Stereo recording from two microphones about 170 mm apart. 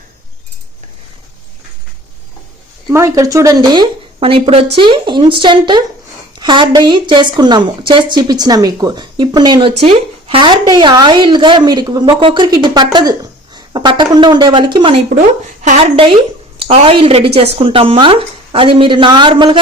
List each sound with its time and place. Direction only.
2.9 s a woman's voice: 20° right (ahead or behind)